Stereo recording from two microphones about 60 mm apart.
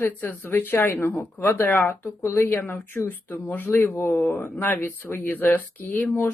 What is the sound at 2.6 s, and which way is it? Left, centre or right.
A woman's voice, left.